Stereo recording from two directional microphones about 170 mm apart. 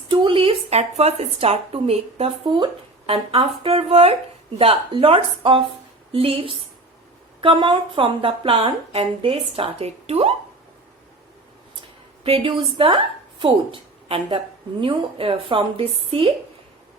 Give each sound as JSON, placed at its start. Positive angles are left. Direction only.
{"t": 0.1, "sound": "a woman's voice", "side_deg": -30}
{"t": 12.2, "sound": "a woman's voice", "side_deg": -35}